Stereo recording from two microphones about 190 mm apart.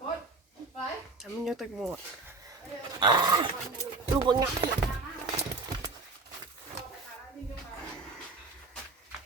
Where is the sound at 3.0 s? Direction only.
20° right (ahead or behind).